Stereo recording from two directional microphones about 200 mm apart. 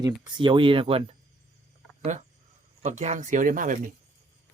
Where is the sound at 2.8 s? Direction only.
35° right (ahead or behind).